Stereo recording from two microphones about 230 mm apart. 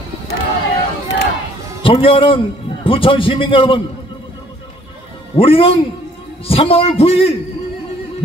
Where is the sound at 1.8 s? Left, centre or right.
Left.